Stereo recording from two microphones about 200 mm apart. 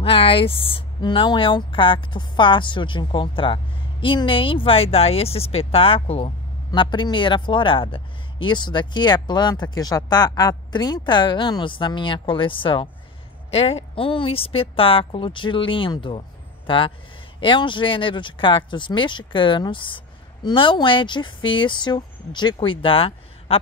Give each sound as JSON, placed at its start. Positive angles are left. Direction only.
{"t": 0.0, "sound": "a woman's voice", "side_deg": 25}